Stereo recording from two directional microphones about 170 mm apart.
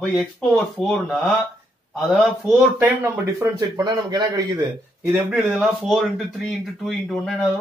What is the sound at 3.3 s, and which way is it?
A man's voice, 20° right (ahead or behind).